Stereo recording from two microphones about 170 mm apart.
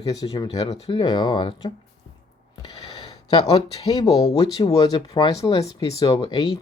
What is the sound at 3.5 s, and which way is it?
Speech, 20° left (ahead or behind).